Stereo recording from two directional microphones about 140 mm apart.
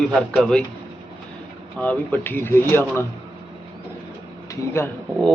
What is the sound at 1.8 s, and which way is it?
Speech, 10° left (ahead or behind).